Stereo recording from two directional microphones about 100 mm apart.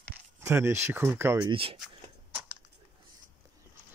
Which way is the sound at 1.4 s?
55° right (ahead or behind).